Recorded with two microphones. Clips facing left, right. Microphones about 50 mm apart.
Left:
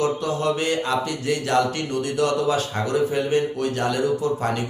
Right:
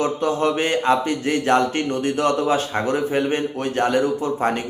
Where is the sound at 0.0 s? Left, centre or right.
Right.